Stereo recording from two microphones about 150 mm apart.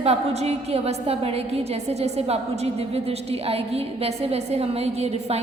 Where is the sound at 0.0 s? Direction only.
45° right (ahead or behind).